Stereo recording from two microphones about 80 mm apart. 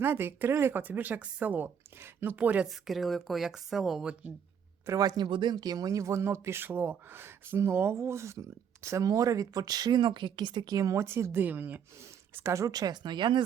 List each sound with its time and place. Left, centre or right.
0.0 s speech: right
2.6 s speech: centre
4.9 s speech: right
5.1 s speech: right
10.8 s speech: right
11.0 s speech: right
12.3 s speech: right